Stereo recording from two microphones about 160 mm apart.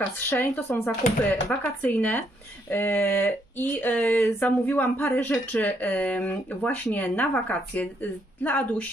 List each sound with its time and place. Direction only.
0.3 s speech: 15° left (ahead or behind)